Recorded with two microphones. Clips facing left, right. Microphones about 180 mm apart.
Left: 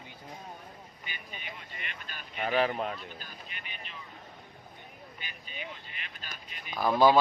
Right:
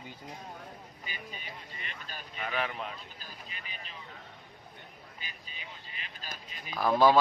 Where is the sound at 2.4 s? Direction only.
35° left (ahead or behind).